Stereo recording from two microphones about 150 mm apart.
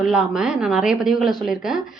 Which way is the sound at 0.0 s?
5° right (ahead or behind).